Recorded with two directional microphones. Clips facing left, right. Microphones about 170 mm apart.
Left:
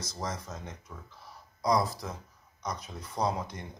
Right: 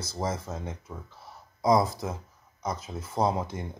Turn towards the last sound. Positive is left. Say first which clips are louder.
# right 4 dB
turn(degrees=-25)  # may be behind; listen again after turning